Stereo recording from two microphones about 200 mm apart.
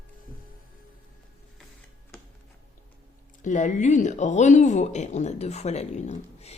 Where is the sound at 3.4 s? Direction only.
40° left (ahead or behind).